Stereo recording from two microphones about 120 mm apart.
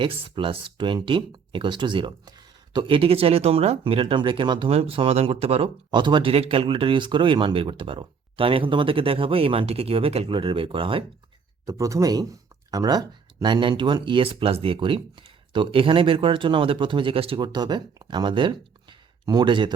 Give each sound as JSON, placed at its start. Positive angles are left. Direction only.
{"t": 0.0, "sound": "speech", "side_deg": -45}
{"t": 4.7, "sound": "speech", "side_deg": -55}
{"t": 6.3, "sound": "speech", "side_deg": -55}
{"t": 11.6, "sound": "speech", "side_deg": -25}